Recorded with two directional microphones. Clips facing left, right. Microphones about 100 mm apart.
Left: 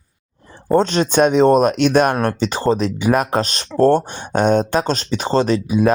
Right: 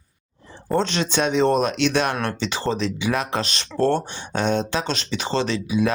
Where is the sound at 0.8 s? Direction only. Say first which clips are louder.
Left 7 dB; 45° left (ahead or behind).